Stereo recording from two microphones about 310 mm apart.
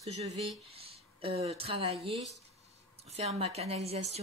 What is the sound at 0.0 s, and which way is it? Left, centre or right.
Speech, right.